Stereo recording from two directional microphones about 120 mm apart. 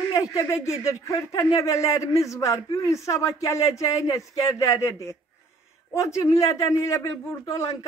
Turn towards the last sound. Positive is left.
turn(degrees=25)  # may be behind; listen again after turning